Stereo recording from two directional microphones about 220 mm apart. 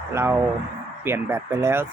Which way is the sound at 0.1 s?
10° right (ahead or behind).